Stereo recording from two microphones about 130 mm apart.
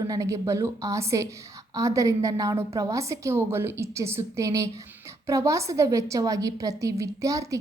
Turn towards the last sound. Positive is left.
turn(degrees=-25)  # may be behind; listen again after turning